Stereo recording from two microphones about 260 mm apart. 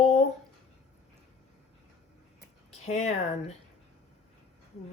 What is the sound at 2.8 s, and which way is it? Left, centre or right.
Speech, left.